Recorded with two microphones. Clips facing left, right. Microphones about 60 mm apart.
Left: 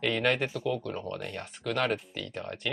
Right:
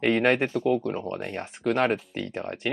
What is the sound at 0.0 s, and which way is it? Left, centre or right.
Speech, right.